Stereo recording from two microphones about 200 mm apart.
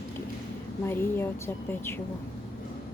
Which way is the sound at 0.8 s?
10° left (ahead or behind).